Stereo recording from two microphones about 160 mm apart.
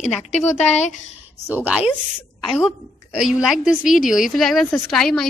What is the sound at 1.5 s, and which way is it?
A woman's voice, 10° right (ahead or behind).